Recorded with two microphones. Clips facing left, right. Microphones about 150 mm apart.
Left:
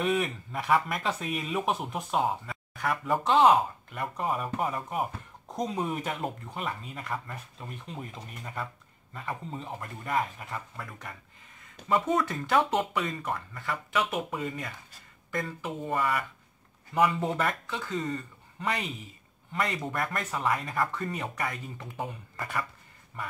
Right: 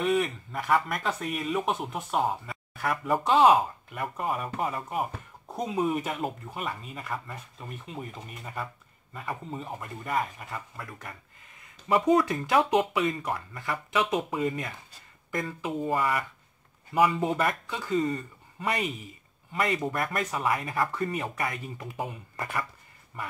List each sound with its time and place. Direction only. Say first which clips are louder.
0.0 s a man's voice: right 2 dB; centre (ahead or behind); by 14.7 s 15° right (ahead or behind)
17.0 s a man's voice: right 2 dB; 5° right (ahead or behind)